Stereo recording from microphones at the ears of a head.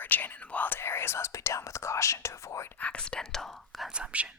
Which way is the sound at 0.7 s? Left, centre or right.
Left.